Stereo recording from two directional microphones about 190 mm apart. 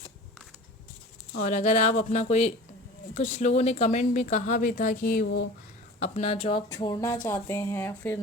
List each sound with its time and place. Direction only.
1.4 s speech: 40° left (ahead or behind)
6.0 s speech: 35° left (ahead or behind); by 8.2 s 10° left (ahead or behind)